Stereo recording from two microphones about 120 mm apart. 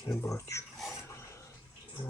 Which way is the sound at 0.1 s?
25° left (ahead or behind).